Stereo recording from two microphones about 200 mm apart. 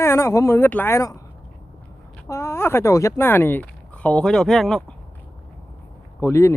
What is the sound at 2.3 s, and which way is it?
Speech, 15° left (ahead or behind).